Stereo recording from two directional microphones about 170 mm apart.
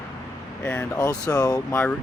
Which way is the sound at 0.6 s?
15° left (ahead or behind).